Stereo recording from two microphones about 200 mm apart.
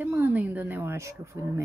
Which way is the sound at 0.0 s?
10° right (ahead or behind).